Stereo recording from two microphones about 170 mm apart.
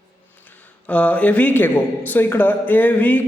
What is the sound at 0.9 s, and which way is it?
A man's voice, 5° left (ahead or behind).